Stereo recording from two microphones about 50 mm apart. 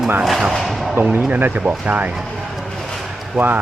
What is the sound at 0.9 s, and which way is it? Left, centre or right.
Speech, right.